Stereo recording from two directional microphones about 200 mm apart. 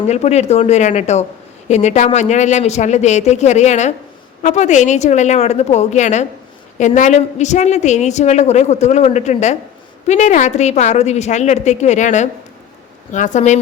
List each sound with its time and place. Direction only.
0.1 s a woman's voice: 35° left (ahead or behind)